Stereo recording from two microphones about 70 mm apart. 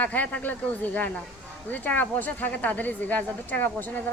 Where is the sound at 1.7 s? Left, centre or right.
Left.